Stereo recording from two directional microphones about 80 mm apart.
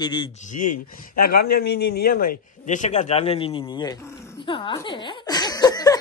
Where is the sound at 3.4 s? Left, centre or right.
Left.